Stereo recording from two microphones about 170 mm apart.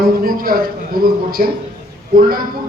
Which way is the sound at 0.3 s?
60° right (ahead or behind).